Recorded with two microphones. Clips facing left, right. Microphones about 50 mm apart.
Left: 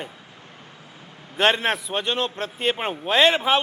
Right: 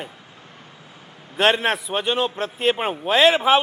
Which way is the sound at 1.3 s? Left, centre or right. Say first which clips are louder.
Right 2 dB; centre.